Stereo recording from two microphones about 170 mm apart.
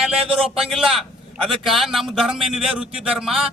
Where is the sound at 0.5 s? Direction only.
5° right (ahead or behind).